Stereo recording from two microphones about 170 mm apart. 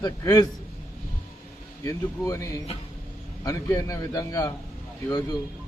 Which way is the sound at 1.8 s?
20° left (ahead or behind).